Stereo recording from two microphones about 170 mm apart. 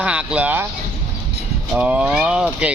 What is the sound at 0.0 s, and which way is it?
Speech, 5° right (ahead or behind).